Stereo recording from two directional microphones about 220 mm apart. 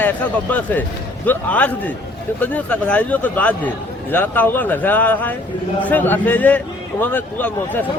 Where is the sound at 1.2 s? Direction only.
10° left (ahead or behind).